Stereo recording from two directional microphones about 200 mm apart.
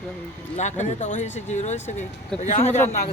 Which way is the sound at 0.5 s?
35° left (ahead or behind).